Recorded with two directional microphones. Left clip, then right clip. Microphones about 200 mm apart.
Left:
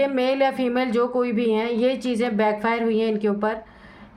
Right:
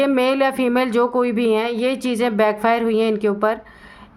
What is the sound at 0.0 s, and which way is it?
A woman's voice, 30° right (ahead or behind).